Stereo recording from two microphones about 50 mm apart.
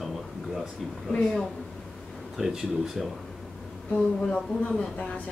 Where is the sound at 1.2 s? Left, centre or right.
Centre.